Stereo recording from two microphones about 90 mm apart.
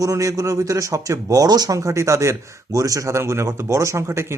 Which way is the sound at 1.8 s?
35° right (ahead or behind).